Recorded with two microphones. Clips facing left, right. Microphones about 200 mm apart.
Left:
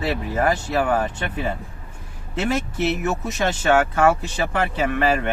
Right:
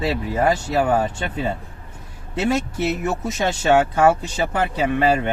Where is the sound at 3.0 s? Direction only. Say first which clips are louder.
Right 1 dB; 30° right (ahead or behind).